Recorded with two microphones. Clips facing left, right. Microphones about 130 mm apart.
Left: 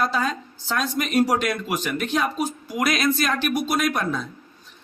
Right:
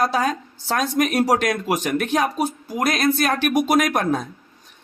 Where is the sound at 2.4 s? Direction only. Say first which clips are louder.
Right 2 dB; 45° right (ahead or behind).